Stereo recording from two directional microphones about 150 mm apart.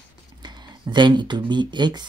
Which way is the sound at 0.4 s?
30° right (ahead or behind).